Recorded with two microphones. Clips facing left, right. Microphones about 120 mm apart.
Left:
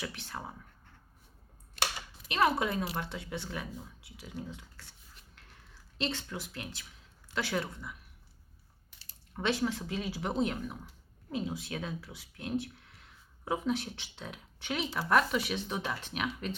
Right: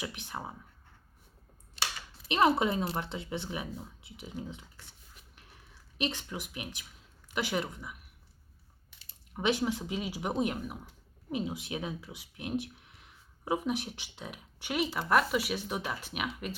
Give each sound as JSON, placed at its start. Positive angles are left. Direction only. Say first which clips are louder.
{"t": 0.0, "sound": "speech", "louder": "right 1 dB", "side_deg": -15}
{"t": 1.8, "sound": "computer keyboard", "louder": "left 3 dB", "side_deg": 55}
{"t": 2.2, "sound": "speech", "louder": "right 3 dB", "side_deg": -25}
{"t": 6.0, "sound": "speech", "louder": "right 1 dB", "side_deg": -15}
{"t": 9.3, "sound": "speech", "louder": "right 2 dB", "side_deg": -15}